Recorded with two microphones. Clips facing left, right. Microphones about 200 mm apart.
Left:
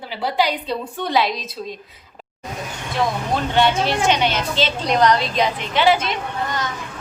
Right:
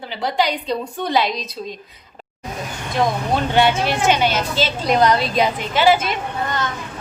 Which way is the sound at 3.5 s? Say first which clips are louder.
Even; 5° right (ahead or behind).